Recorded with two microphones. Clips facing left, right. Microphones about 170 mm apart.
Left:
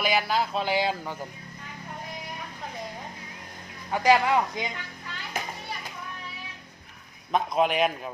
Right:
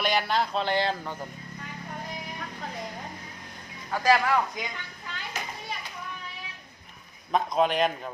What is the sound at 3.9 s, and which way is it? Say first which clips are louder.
Speech: left 2 dB; 20° left (ahead or behind).